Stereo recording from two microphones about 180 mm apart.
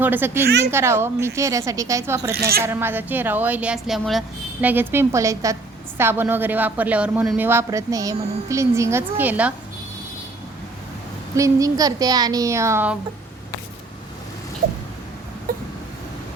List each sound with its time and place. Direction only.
0.0 s speech: 10° right (ahead or behind)
2.3 s speech: 60° right (ahead or behind)
2.6 s speech: 15° right (ahead or behind)
4.6 s speech: 10° right (ahead or behind)
11.3 s a woman's voice: 20° right (ahead or behind)
15.5 s a sound: 50° right (ahead or behind)